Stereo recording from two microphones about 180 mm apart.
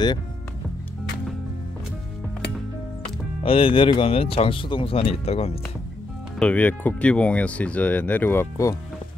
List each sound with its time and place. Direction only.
3.4 s speech: 30° left (ahead or behind)
6.4 s speech: 10° left (ahead or behind)